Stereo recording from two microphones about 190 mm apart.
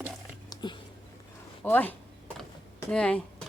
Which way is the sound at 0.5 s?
25° left (ahead or behind).